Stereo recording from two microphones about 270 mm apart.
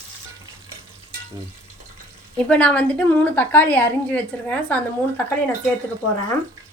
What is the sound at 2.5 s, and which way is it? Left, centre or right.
A woman's voice, centre.